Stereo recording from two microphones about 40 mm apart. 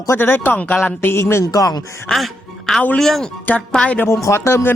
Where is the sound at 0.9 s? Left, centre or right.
Left.